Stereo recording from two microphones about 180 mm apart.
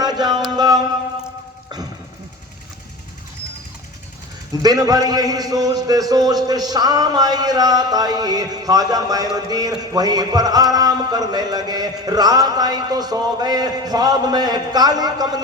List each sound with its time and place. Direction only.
0.0 s music: 20° right (ahead or behind)
4.6 s a man's voice: 20° right (ahead or behind)